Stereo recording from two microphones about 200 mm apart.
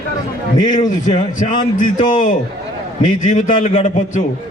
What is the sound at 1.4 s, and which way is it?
A man's voice, 40° left (ahead or behind).